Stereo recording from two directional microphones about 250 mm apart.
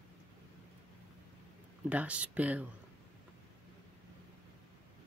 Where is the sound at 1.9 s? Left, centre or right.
Centre.